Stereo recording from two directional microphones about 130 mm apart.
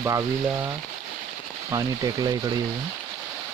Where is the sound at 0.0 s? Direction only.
25° right (ahead or behind).